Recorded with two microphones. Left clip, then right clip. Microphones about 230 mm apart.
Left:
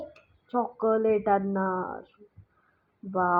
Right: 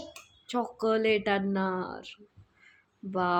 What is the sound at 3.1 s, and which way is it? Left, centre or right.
Speech, right.